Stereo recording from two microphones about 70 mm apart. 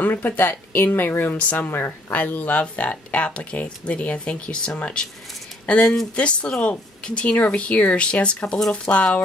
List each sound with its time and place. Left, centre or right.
0.0 s speech: left